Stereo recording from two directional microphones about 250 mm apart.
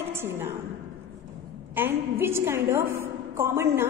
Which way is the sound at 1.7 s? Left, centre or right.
Centre.